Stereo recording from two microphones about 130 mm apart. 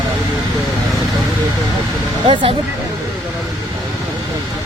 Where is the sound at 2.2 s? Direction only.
40° right (ahead or behind).